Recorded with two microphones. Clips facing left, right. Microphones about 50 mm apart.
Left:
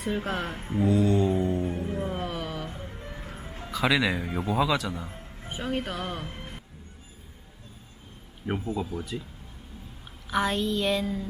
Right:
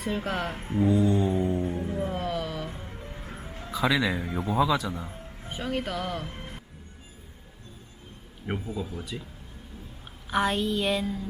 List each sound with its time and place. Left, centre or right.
0.0 s speech: centre
0.5 s mantra: centre
2.6 s music: centre
3.7 s speech: centre
6.2 s music: centre
8.4 s speech: left
8.9 s speech: left
10.2 s a woman's voice: centre